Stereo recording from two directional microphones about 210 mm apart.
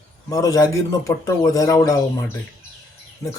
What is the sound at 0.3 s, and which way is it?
Speech, 15° left (ahead or behind).